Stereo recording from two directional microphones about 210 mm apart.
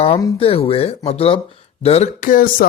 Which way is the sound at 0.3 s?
25° left (ahead or behind).